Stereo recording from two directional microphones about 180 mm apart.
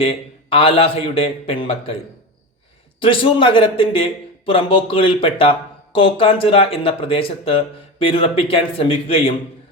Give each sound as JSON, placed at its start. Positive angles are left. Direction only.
{"t": 0.0, "sound": "a man's voice", "side_deg": 30}
{"t": 3.0, "sound": "a man's voice", "side_deg": 30}